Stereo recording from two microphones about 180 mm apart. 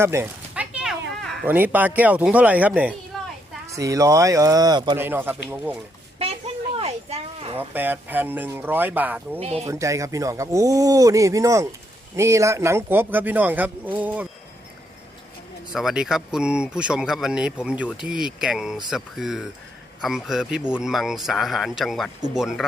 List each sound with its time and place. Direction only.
0.0 s a sound: 15° right (ahead or behind)
1.2 s cat: centre (ahead or behind)
1.5 s a man's voice: 10° right (ahead or behind)
3.1 s a sound: centre (ahead or behind)
3.7 s a man's voice: 20° right (ahead or behind)
4.9 s a man's voice: 10° right (ahead or behind)
6.1 s a sound: 35° right (ahead or behind)
7.7 s a man's voice: 10° right (ahead or behind)
9.4 s speech: 35° right (ahead or behind)
9.6 s a man's voice: 15° right (ahead or behind)
15.7 s speech: 5° right (ahead or behind)